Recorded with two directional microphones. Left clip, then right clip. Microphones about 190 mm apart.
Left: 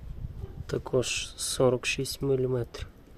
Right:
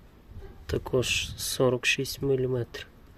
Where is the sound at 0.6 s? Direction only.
10° right (ahead or behind).